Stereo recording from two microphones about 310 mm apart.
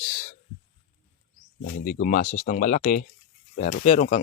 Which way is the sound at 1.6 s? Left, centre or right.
Left.